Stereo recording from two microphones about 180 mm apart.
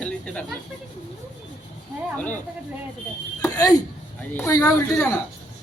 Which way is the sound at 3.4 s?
20° left (ahead or behind).